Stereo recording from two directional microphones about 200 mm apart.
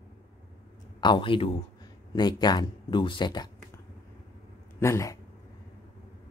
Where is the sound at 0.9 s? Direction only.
25° left (ahead or behind).